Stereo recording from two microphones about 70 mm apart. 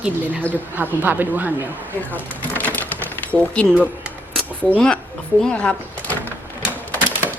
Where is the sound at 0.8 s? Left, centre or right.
Right.